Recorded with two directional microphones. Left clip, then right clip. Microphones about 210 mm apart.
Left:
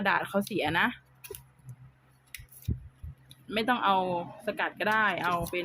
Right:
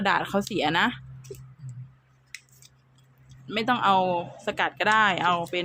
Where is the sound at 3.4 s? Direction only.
10° right (ahead or behind).